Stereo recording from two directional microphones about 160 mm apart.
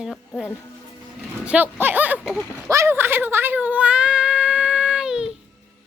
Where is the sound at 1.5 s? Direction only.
10° right (ahead or behind).